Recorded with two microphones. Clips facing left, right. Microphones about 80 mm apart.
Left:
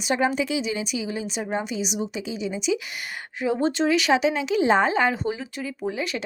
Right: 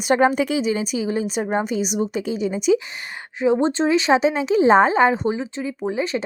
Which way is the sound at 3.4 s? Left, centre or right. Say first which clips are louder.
Right 4 dB; right.